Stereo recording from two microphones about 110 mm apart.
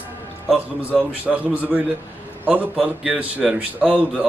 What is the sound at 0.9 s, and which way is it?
A man's voice, 15° right (ahead or behind).